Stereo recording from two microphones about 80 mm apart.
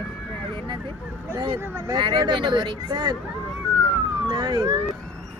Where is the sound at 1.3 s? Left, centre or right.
Right.